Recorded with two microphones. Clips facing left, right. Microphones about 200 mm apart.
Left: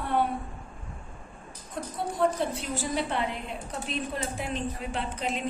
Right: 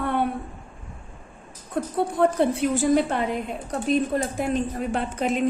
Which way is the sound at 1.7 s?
60° right (ahead or behind).